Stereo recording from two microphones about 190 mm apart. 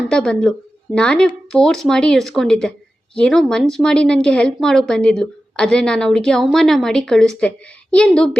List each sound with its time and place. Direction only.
0.1 s speech: 5° left (ahead or behind)